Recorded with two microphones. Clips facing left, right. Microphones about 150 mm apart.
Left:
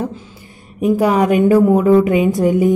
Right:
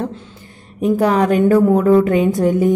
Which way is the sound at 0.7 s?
10° left (ahead or behind).